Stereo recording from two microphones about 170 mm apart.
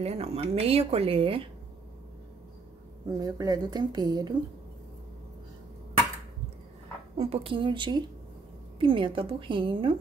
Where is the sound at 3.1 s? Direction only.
20° right (ahead or behind).